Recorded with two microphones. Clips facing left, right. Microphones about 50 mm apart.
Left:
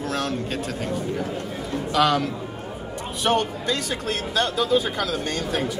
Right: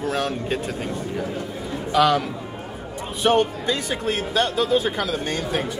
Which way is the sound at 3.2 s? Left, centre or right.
Centre.